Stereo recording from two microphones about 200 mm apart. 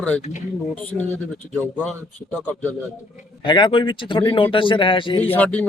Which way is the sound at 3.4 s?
25° left (ahead or behind).